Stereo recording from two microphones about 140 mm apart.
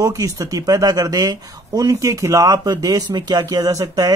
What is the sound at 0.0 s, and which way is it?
Speech, 25° right (ahead or behind).